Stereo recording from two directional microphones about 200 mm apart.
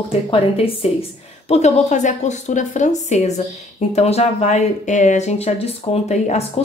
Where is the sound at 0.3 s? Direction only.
30° left (ahead or behind).